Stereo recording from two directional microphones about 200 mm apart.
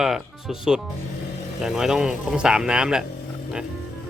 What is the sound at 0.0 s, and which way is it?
Speech, centre (ahead or behind).